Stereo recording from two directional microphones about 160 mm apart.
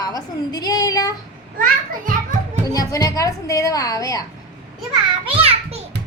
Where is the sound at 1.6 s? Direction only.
60° right (ahead or behind).